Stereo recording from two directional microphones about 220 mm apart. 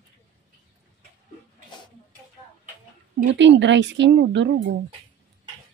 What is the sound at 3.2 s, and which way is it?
A woman's voice, 55° right (ahead or behind).